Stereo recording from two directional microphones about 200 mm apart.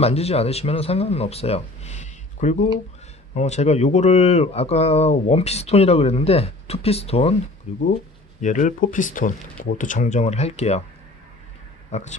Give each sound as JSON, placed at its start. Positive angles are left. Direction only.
{"t": 0.0, "sound": "speech", "side_deg": 30}
{"t": 11.9, "sound": "speech", "side_deg": 35}